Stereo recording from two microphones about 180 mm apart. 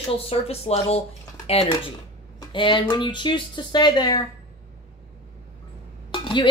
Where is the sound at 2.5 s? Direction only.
25° left (ahead or behind).